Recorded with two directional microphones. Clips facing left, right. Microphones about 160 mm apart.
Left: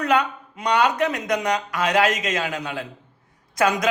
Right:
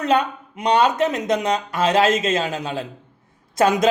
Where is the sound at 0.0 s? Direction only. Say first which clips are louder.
Right 2 dB; 25° right (ahead or behind).